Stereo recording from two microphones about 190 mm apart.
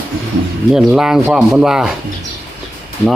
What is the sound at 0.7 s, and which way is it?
Speech, 5° right (ahead or behind).